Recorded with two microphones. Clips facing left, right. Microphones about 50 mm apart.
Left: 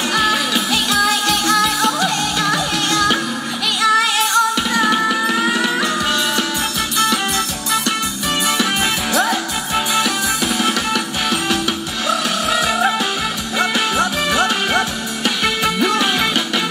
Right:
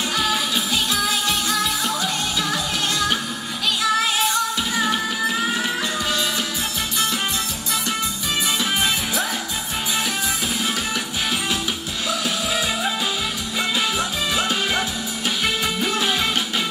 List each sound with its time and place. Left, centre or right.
0.1 s music: left
8.5 s music: left